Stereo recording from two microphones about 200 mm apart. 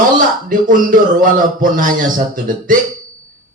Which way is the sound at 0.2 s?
45° right (ahead or behind).